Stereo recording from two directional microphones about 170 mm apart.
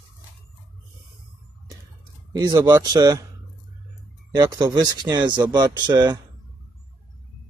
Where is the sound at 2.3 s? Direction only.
25° right (ahead or behind).